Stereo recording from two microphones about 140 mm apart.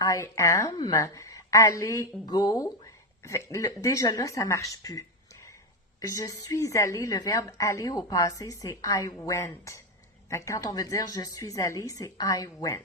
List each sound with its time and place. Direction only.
0.0 s a woman's voice: 25° left (ahead or behind)